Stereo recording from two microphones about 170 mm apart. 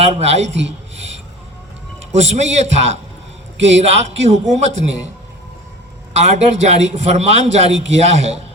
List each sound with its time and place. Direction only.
0.0 s a man's voice: 35° right (ahead or behind)
2.1 s a man's voice: 40° right (ahead or behind)
6.1 s a man's voice: 40° right (ahead or behind)